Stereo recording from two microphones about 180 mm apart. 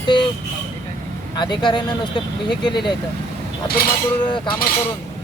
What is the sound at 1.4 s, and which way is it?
Speech, 25° left (ahead or behind).